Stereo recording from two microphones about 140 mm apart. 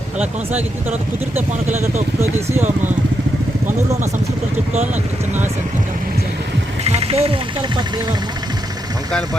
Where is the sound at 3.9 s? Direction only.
55° right (ahead or behind).